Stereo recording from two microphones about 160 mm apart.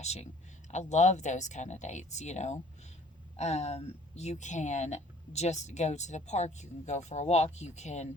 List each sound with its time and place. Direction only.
0.0 s speech: 45° left (ahead or behind)